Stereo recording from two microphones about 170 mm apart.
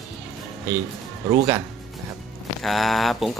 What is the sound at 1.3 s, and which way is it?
Speech, 25° right (ahead or behind).